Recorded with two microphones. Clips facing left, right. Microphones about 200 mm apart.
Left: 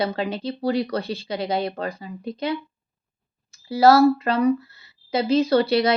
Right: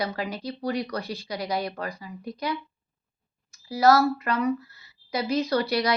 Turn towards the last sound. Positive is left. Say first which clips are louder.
# left 6 dB
turn(degrees=25)  # may be behind; listen again after turning